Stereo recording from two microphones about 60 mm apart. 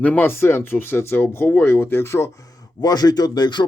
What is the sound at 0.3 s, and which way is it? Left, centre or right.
Speech, left.